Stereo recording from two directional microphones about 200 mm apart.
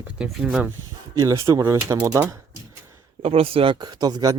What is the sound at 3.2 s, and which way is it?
Speech, 30° right (ahead or behind).